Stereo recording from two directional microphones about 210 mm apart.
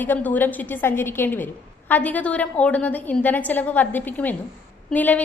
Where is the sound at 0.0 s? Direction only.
10° left (ahead or behind).